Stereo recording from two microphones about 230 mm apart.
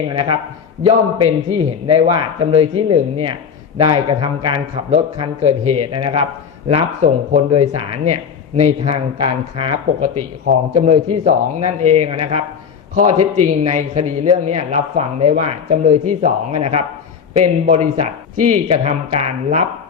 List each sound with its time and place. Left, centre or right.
0.1 s speech: right
1.5 s a man's voice: right